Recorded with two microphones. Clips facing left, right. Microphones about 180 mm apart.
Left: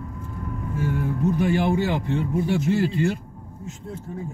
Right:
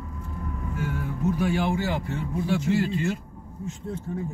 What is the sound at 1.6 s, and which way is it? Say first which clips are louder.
Speech: left 4 dB; 20° left (ahead or behind).